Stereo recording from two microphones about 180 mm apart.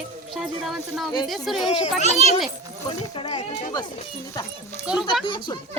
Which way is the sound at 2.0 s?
35° right (ahead or behind).